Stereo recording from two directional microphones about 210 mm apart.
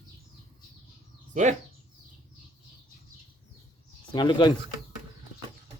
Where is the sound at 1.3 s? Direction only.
35° right (ahead or behind).